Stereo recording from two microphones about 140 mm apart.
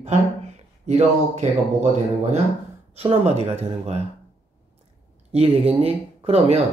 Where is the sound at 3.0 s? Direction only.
45° right (ahead or behind).